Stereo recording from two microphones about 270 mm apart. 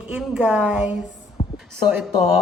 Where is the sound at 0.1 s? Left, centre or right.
Centre.